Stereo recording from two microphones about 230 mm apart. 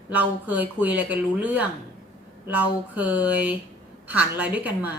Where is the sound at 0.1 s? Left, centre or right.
Centre.